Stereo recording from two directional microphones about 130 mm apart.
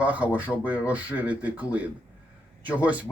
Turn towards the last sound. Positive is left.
turn(degrees=-10)  # may be behind; listen again after turning